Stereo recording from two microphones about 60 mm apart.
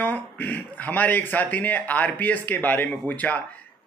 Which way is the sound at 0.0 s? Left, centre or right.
Left.